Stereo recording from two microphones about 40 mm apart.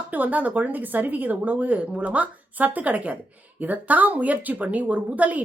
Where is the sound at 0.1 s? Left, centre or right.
Right.